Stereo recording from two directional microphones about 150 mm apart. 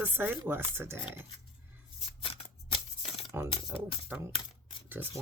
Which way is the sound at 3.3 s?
15° right (ahead or behind).